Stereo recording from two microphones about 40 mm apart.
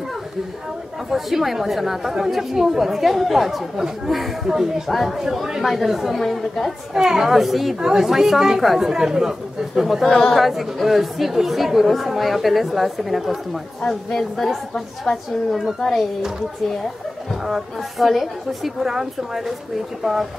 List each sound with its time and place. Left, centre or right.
1.1 s a woman's voice: centre
6.2 s a woman's voice: centre
6.9 s a woman's voice: centre
10.0 s a woman's voice: centre
10.3 s a woman's voice: centre
15.1 s a woman's voice: centre
17.5 s a woman's voice: centre